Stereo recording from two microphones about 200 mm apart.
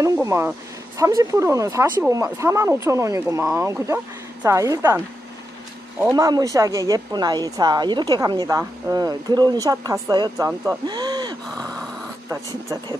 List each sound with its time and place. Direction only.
0.0 s speech: 15° right (ahead or behind)
6.1 s a woman's voice: 15° right (ahead or behind)
11.5 s a sound: 5° left (ahead or behind)
12.3 s speech: 15° right (ahead or behind)